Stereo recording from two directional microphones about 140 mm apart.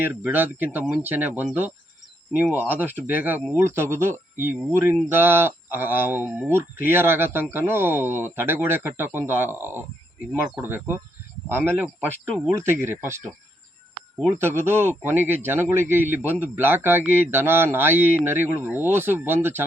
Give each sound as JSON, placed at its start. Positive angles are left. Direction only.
{"t": 0.0, "sound": "a man's voice", "side_deg": -15}